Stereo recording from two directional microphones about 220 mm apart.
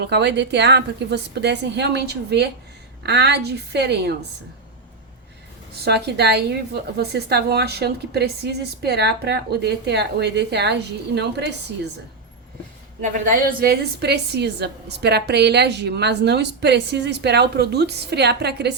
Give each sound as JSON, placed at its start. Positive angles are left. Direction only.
{"t": 0.0, "sound": "a woman's voice", "side_deg": -50}
{"t": 5.8, "sound": "a woman's voice", "side_deg": -50}
{"t": 13.0, "sound": "a woman's voice", "side_deg": -35}